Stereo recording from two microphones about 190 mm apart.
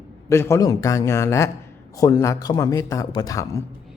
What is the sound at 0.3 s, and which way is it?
Speech, 15° left (ahead or behind).